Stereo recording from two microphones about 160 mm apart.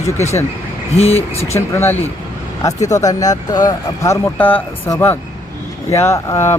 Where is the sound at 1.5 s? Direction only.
15° left (ahead or behind).